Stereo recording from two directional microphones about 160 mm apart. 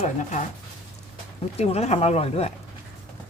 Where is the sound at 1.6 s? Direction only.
40° left (ahead or behind).